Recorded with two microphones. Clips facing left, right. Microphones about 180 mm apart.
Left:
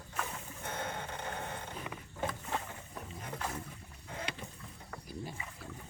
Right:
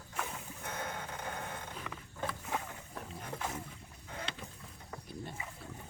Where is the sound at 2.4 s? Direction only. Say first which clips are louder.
Even; centre (ahead or behind).